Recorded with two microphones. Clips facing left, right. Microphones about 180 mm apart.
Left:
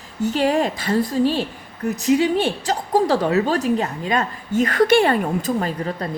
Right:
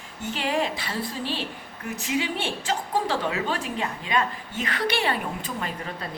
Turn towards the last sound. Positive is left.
turn(degrees=40)  # may be behind; listen again after turning